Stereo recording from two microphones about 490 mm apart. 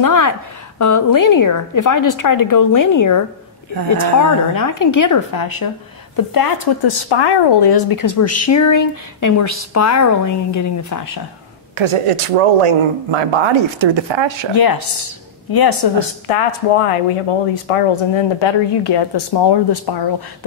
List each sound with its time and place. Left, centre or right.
0.0 s speech: left
4.2 s speech: left
11.7 s speech: right
14.5 s speech: left
15.8 s speech: left